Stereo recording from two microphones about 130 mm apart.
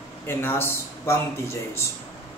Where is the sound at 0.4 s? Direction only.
15° left (ahead or behind).